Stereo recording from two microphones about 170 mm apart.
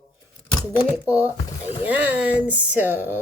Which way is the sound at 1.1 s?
10° right (ahead or behind).